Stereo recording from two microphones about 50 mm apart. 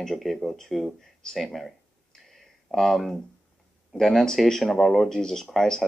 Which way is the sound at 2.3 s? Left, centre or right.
Centre.